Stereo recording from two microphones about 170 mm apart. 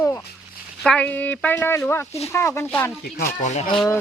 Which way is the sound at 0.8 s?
5° left (ahead or behind).